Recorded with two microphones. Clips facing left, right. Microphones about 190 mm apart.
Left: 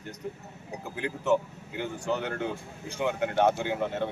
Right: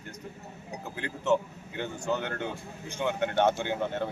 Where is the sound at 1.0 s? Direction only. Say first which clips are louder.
Left 1 dB; 10° left (ahead or behind).